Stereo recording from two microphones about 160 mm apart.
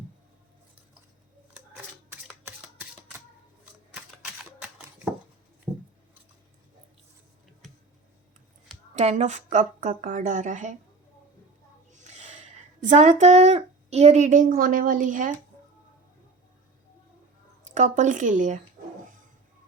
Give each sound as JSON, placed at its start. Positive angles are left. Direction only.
{"t": 2.4, "sound": "typewriter", "side_deg": -15}
{"t": 5.7, "sound": "a sound", "side_deg": -15}
{"t": 9.0, "sound": "a woman's voice", "side_deg": -45}
{"t": 11.9, "sound": "speech", "side_deg": -45}
{"t": 17.7, "sound": "a woman's voice", "side_deg": -50}